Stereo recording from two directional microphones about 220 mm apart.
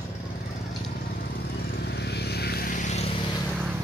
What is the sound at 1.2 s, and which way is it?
Vehicle, 45° left (ahead or behind).